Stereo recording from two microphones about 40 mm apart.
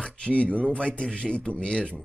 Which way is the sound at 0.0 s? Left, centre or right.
Left.